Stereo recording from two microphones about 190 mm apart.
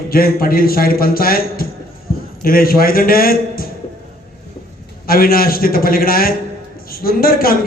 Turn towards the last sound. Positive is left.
turn(degrees=50)  # may be behind; listen again after turning